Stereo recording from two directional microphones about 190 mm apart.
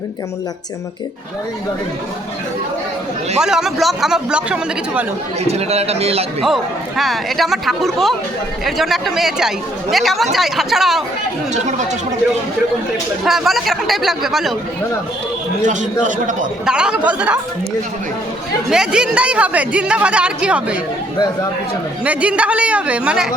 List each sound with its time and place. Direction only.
3.4 s speech: 5° right (ahead or behind)
5.5 s a man's voice: 35° right (ahead or behind)
6.4 s speech: centre (ahead or behind)
11.5 s a man's voice: 40° right (ahead or behind)
13.2 s speech: centre (ahead or behind)
15.6 s a man's voice: 40° right (ahead or behind)
16.6 s speech: 5° right (ahead or behind)
18.7 s speech: 5° right (ahead or behind)
22.0 s speech: 5° right (ahead or behind)